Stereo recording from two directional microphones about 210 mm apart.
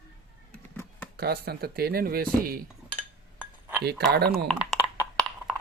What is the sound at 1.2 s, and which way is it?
Speech, 50° right (ahead or behind).